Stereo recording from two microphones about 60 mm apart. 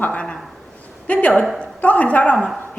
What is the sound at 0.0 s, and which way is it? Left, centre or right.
A woman's voice, left.